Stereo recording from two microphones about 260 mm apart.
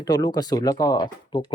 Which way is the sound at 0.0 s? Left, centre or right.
Centre.